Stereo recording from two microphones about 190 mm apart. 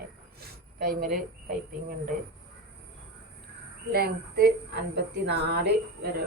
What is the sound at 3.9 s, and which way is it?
A woman's voice, 55° right (ahead or behind).